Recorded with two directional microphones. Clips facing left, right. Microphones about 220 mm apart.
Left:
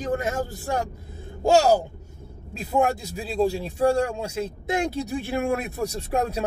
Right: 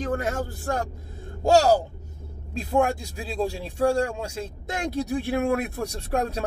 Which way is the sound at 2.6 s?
5° left (ahead or behind).